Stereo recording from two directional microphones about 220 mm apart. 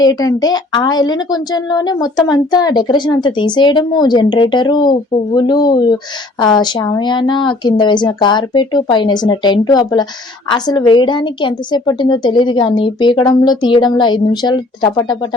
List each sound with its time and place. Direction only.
0.0 s speech: 15° left (ahead or behind)